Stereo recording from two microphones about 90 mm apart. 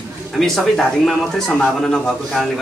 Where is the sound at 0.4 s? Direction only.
5° left (ahead or behind).